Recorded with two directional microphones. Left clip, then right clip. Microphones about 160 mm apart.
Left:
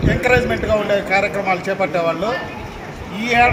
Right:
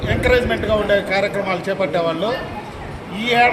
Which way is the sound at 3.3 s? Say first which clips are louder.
Left 1 dB; centre (ahead or behind).